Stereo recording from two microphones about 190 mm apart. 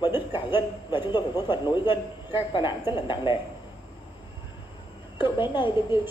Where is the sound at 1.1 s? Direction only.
25° left (ahead or behind).